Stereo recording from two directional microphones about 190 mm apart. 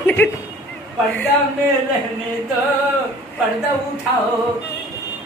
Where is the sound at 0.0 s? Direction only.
10° left (ahead or behind).